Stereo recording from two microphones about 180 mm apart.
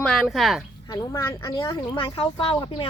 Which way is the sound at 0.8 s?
20° left (ahead or behind).